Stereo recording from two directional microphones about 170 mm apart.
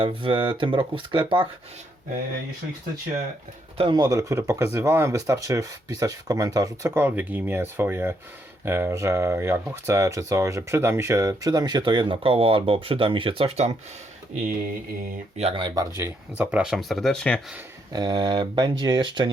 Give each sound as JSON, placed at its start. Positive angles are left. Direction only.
{"t": 0.0, "sound": "speech", "side_deg": -30}
{"t": 3.8, "sound": "speech", "side_deg": -25}
{"t": 15.4, "sound": "speech", "side_deg": -35}
{"t": 16.0, "sound": "speech", "side_deg": -15}
{"t": 17.9, "sound": "speech", "side_deg": -25}